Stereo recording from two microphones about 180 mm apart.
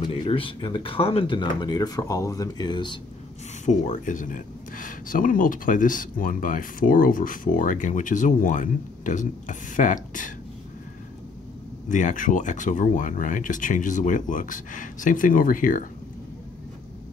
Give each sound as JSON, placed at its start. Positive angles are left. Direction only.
{"t": 0.0, "sound": "speech", "side_deg": 30}
{"t": 3.6, "sound": "speech", "side_deg": 45}
{"t": 11.9, "sound": "speech", "side_deg": 45}